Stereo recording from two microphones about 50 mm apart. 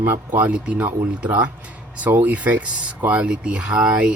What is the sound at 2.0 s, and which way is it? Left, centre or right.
Speech, right.